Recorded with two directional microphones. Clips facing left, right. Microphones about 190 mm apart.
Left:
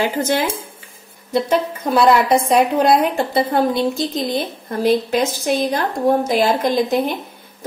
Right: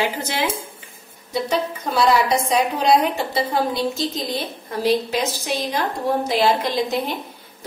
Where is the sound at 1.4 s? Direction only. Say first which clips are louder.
Left 4 dB; 55° left (ahead or behind).